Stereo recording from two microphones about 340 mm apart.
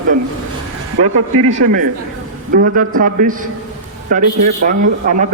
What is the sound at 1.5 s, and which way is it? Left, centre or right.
A man's voice, right.